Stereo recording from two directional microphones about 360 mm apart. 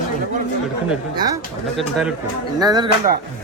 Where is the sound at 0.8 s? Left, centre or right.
Centre.